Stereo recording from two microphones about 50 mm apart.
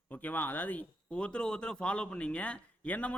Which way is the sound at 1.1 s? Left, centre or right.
Centre.